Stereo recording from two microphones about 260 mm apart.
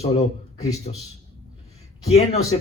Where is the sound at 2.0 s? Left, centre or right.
Left.